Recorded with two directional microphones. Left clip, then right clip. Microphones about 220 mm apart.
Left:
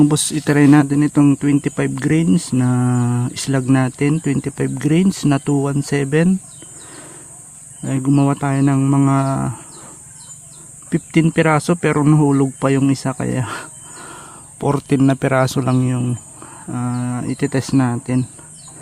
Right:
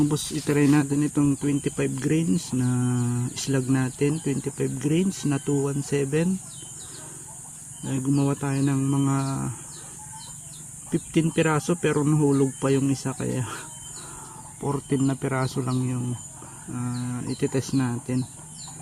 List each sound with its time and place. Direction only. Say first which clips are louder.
0.0 s speech: left 9 dB; 50° left (ahead or behind)
7.9 s speech: left 8 dB; 45° left (ahead or behind)
10.8 s speech: left 8 dB; 45° left (ahead or behind)